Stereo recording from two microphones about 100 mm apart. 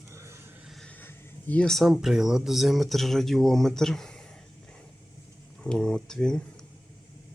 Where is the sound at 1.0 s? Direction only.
15° left (ahead or behind).